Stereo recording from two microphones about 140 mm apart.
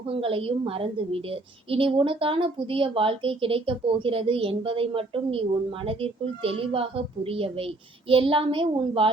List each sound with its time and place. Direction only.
0.1 s a woman's voice: 40° right (ahead or behind)